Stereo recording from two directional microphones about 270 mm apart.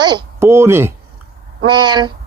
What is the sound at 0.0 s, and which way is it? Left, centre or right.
Speech, centre.